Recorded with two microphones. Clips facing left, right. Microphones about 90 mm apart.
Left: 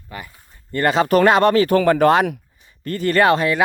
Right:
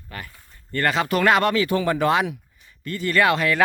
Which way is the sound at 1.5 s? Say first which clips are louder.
Left 6 dB; 50° left (ahead or behind).